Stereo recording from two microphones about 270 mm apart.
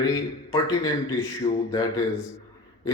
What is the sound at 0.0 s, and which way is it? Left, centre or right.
A man's voice, centre.